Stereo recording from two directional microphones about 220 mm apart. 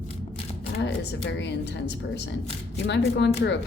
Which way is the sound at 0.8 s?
50° left (ahead or behind).